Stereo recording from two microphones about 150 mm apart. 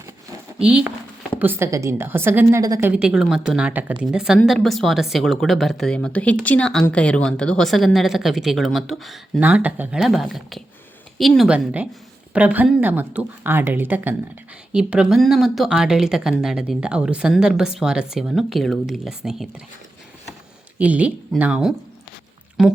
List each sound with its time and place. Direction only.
0.6 s a woman's voice: 5° right (ahead or behind); by 2.9 s 20° right (ahead or behind)
2.9 s speech: 5° right (ahead or behind)
9.4 s speech: 10° right (ahead or behind)
20.7 s speech: 10° right (ahead or behind)